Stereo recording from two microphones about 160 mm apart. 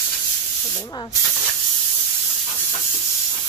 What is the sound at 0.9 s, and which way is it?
Speech, 25° left (ahead or behind).